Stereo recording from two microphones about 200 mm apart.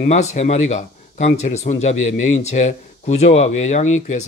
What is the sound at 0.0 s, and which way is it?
Speech, 35° left (ahead or behind).